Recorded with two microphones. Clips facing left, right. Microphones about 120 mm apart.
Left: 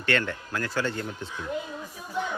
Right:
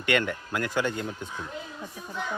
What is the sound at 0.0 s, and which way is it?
Speech, 15° right (ahead or behind).